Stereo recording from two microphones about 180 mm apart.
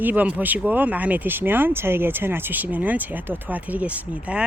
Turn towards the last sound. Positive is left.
turn(degrees=-5)  # may be behind; listen again after turning